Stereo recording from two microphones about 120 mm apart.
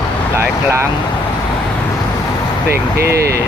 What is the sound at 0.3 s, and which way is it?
Speech, 20° right (ahead or behind).